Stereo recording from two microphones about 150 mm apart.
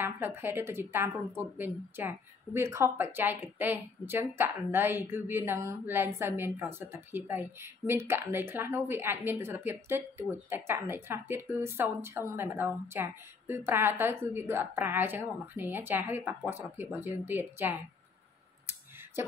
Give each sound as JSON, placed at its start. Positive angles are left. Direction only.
{"t": 0.0, "sound": "a woman's voice", "side_deg": -15}
{"t": 19.2, "sound": "a woman's voice", "side_deg": -15}